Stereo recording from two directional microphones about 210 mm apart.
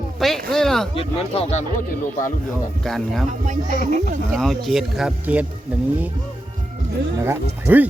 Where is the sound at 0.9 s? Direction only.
30° left (ahead or behind).